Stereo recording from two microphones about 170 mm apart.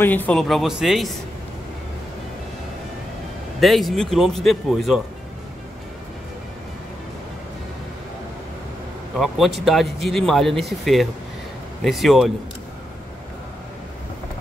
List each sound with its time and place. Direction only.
0.0 s speech: 10° left (ahead or behind)
3.6 s speech: centre (ahead or behind)
9.2 s speech: centre (ahead or behind)